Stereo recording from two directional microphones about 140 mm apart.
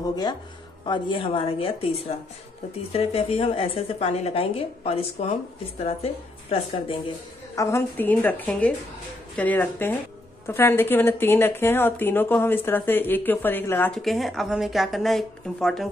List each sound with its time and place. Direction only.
0.1 s a woman's voice: 30° left (ahead or behind)
7.5 s speech: 20° left (ahead or behind)
14.0 s speech: centre (ahead or behind)